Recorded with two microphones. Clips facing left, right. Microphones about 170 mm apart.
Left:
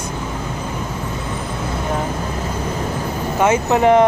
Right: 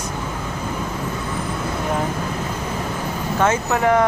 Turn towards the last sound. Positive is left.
turn(degrees=20)  # may be behind; listen again after turning